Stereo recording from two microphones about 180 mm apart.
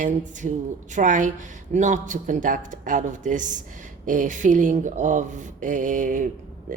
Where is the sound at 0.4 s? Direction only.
40° right (ahead or behind).